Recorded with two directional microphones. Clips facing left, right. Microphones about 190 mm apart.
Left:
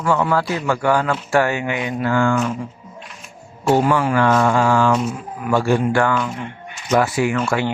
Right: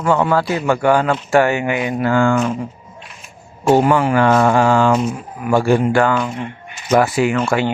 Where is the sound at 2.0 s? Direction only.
55° right (ahead or behind).